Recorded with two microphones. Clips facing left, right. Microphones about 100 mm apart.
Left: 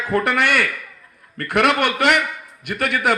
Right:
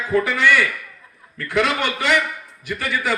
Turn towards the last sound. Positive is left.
turn(degrees=60)  # may be behind; listen again after turning